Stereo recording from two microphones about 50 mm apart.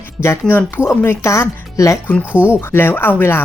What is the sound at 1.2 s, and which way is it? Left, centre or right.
Speech, left.